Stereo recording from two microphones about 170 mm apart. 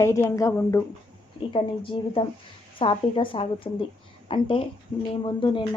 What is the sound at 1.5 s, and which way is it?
A woman's voice, 30° left (ahead or behind).